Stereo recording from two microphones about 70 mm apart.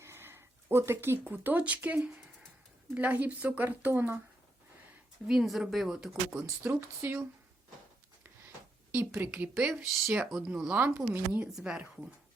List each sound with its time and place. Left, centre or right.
0.0 s speech: right
5.2 s a woman's voice: centre
6.7 s speech: right
8.9 s speech: right
9.6 s speech: centre
10.8 s speech: right
11.5 s speech: centre